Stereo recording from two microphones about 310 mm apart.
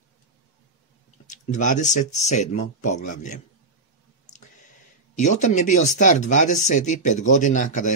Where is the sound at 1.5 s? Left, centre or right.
Left.